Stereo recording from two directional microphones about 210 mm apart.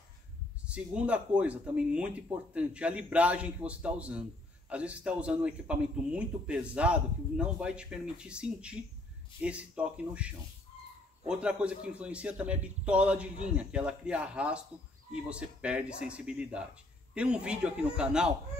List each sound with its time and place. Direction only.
0.7 s speech: 5° right (ahead or behind)